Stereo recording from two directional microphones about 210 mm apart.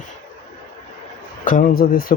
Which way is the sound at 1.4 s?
40° left (ahead or behind).